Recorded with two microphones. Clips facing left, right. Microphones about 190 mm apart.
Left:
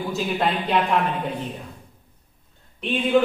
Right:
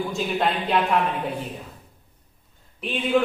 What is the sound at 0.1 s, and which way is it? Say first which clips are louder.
Speech: left 1 dB; centre (ahead or behind).